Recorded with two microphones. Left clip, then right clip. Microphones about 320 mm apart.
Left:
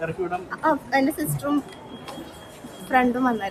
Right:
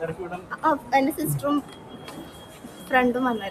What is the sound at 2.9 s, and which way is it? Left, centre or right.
Speech, centre.